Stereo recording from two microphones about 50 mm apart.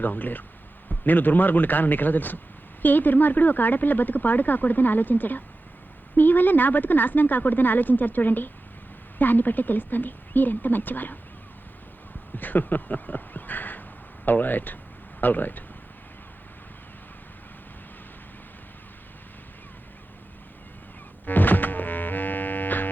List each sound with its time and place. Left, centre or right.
0.0 s speech: left
12.4 s speech: left
21.2 s music: left